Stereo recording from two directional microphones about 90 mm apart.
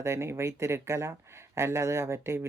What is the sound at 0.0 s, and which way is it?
Speech, 30° right (ahead or behind).